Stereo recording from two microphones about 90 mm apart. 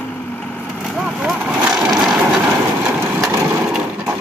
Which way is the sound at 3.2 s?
40° right (ahead or behind).